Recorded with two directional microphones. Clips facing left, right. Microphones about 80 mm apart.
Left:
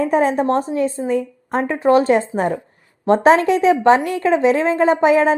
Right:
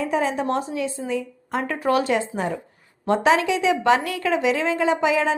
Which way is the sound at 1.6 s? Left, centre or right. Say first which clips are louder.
Left 7 dB; left.